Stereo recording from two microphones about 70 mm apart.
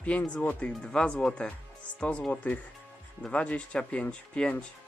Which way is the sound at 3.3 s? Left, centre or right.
Centre.